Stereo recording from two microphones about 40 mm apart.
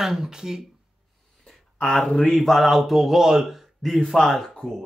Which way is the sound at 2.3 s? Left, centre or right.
Centre.